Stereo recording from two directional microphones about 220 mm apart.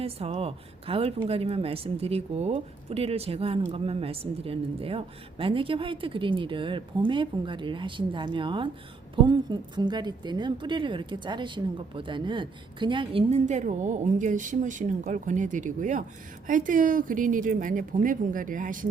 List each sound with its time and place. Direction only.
0.0 s a woman's voice: 25° right (ahead or behind)